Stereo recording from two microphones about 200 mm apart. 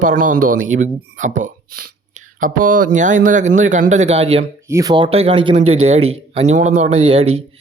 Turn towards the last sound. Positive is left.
turn(degrees=-30)  # may be behind; listen again after turning